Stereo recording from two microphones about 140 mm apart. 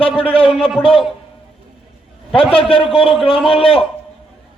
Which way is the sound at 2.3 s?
40° left (ahead or behind).